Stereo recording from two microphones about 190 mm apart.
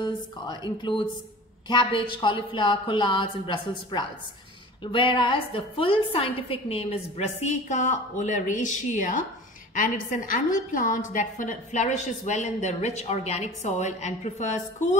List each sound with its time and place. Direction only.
0.0 s a woman's voice: 25° left (ahead or behind)
4.8 s a woman's voice: 25° left (ahead or behind)